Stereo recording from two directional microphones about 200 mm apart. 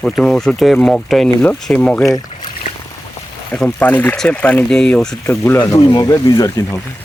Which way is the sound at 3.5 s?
5° left (ahead or behind).